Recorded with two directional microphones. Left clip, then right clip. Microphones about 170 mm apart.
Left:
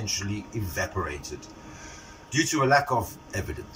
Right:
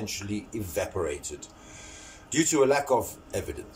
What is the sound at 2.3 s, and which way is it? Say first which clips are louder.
Speech: left 1 dB; 30° right (ahead or behind).